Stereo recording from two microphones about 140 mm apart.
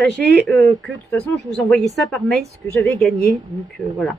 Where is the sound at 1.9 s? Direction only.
5° left (ahead or behind).